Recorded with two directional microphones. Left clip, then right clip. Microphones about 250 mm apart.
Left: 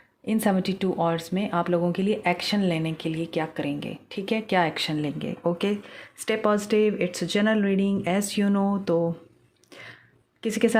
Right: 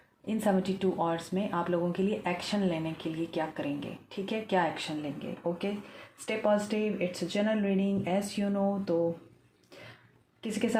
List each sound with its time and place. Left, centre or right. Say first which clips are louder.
0.3 s speech: left 4 dB; left
10.4 s speech: left 9 dB; left